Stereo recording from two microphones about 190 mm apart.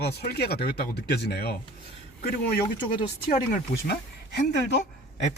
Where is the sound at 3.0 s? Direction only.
30° left (ahead or behind).